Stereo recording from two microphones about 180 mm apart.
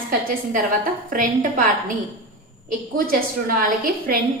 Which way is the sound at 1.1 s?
50° right (ahead or behind).